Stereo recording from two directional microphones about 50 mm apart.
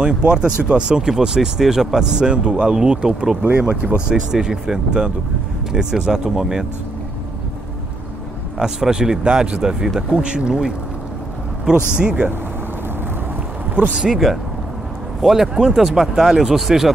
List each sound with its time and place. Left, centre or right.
0.0 s speech: centre
3.4 s speech: right; by 6.6 s centre
8.5 s speech: centre
13.9 s speech: centre
15.2 s speech: centre